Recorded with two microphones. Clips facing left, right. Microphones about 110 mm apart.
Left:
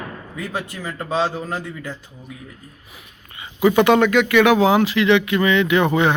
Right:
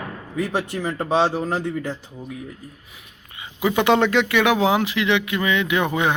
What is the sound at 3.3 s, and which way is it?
Speech, 10° right (ahead or behind).